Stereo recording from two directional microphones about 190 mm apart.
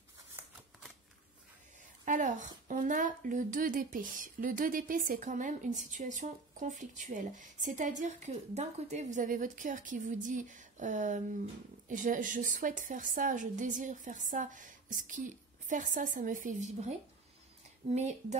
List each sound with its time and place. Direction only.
2.0 s a woman's voice: 40° right (ahead or behind)
17.9 s speech: 35° right (ahead or behind)